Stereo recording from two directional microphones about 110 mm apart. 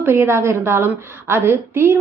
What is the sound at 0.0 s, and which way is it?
A woman's voice, 20° right (ahead or behind).